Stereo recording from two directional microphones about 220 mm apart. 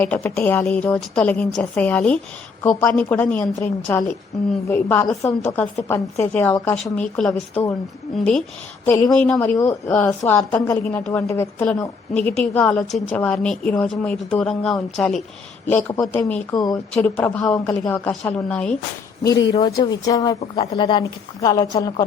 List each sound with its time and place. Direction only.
0.0 s a woman's voice: 10° left (ahead or behind)
16.6 s a woman's voice: 20° left (ahead or behind)
16.9 s a woman's voice: 5° left (ahead or behind)
19.2 s a woman's voice: 15° left (ahead or behind)